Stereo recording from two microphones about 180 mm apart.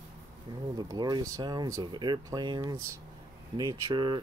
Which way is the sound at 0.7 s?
25° right (ahead or behind).